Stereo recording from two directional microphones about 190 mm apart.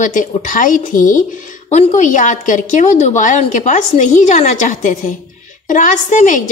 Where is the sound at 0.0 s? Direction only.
40° left (ahead or behind).